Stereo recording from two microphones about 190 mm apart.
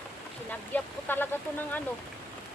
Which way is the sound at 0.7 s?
10° left (ahead or behind).